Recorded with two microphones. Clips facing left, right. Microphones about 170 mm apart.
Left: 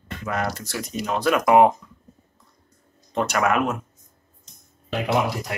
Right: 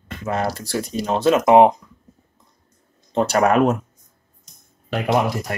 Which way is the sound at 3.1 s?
30° right (ahead or behind).